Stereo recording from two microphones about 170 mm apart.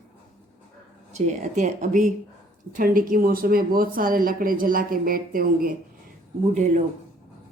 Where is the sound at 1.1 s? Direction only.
45° right (ahead or behind).